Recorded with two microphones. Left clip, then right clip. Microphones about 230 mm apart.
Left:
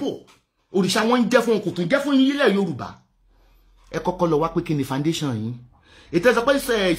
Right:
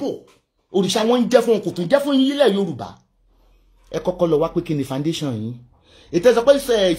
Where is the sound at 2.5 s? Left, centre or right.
Left.